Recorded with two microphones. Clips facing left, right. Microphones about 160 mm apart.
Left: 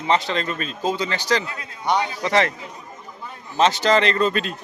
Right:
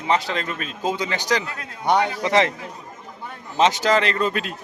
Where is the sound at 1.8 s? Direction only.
60° right (ahead or behind).